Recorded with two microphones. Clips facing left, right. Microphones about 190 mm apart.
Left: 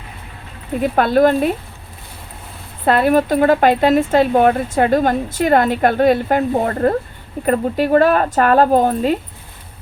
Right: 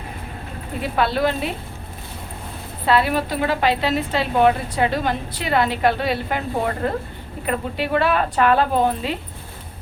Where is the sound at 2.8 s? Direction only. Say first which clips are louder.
Left 5 dB; 50° left (ahead or behind).